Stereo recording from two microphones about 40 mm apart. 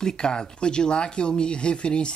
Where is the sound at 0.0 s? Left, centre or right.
Centre.